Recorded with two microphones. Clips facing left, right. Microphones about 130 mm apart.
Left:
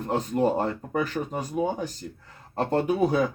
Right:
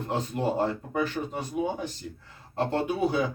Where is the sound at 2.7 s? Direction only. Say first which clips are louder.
Left 5 dB; 40° left (ahead or behind).